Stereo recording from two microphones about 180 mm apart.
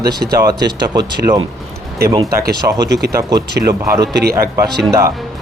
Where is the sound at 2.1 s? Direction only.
20° right (ahead or behind).